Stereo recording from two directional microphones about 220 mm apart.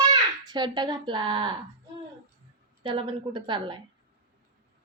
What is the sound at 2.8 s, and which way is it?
Speech, 20° right (ahead or behind).